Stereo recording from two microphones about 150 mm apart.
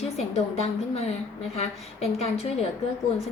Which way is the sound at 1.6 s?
45° left (ahead or behind).